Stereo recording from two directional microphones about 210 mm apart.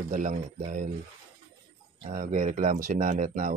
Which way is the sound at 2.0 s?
35° right (ahead or behind).